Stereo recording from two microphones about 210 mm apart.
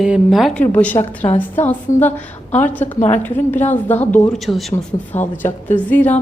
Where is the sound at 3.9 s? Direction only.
10° left (ahead or behind).